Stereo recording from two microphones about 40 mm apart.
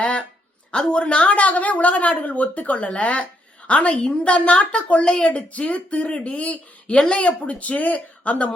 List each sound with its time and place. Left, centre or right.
0.0 s a sound: left
0.7 s a woman's voice: left
5.0 s speech: left
5.3 s a woman's voice: left